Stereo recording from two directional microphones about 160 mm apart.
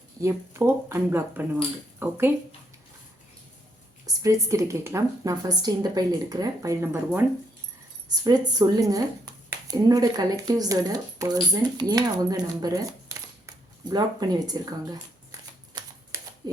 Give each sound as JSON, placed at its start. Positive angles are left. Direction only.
{"t": 0.2, "sound": "speech", "side_deg": -15}
{"t": 4.0, "sound": "a woman's voice", "side_deg": -20}
{"t": 8.1, "sound": "a woman's voice", "side_deg": -25}
{"t": 13.8, "sound": "a woman's voice", "side_deg": -25}
{"t": 15.8, "sound": "typewriter", "side_deg": -30}